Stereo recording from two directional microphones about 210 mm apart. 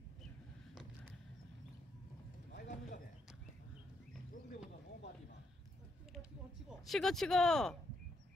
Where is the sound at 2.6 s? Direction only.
35° left (ahead or behind).